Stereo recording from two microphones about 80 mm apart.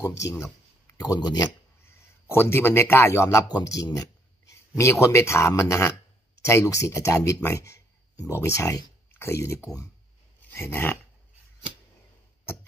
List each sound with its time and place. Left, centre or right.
0.9 s speech: left
1.9 s a man's voice: left
3.4 s speech: left
7.4 s a sound: left
8.4 s speech: left
10.5 s dog: left